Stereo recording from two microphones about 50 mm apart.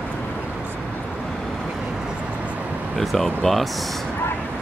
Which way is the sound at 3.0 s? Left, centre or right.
Centre.